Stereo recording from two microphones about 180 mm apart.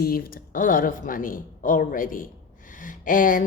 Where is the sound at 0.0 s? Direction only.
55° left (ahead or behind).